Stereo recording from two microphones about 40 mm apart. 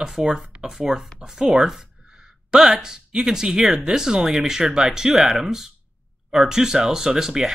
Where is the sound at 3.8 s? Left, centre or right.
Centre.